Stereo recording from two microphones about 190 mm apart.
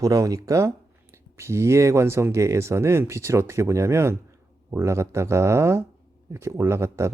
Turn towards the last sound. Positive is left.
turn(degrees=-15)  # may be behind; listen again after turning